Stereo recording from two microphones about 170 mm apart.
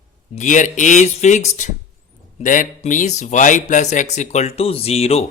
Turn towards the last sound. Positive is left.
turn(degrees=35)  # may be behind; listen again after turning